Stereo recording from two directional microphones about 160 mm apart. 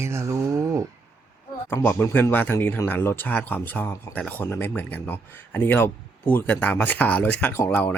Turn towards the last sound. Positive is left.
turn(degrees=15)  # may be behind; listen again after turning